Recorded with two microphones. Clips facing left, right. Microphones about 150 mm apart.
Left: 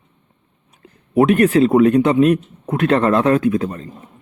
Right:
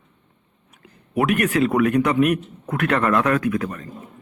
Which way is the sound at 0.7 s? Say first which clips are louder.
Left 7 dB; 30° left (ahead or behind).